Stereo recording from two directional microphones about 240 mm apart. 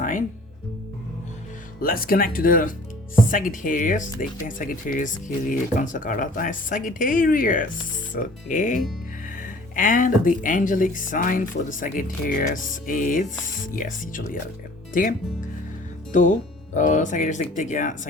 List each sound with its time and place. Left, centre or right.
0.0 s music: left
1.8 s speech: left
16.7 s speech: left